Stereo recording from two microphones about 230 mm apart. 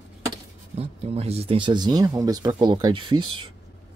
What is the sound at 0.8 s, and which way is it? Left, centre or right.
Speech, right.